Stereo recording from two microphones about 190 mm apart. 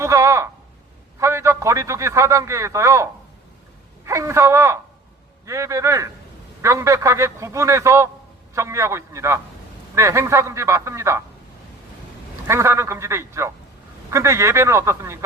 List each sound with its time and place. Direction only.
0.0 s a sound: 15° right (ahead or behind)
1.2 s a man's voice: 15° right (ahead or behind)
12.5 s a man's voice: 15° right (ahead or behind)